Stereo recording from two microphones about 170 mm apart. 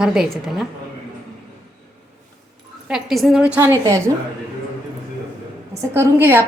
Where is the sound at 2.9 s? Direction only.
Centre (ahead or behind); by 4.0 s 15° right (ahead or behind).